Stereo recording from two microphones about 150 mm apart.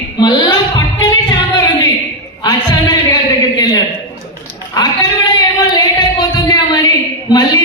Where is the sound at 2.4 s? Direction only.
25° left (ahead or behind).